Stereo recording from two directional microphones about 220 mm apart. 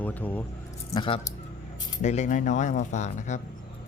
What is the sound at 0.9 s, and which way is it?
Speech, 20° left (ahead or behind).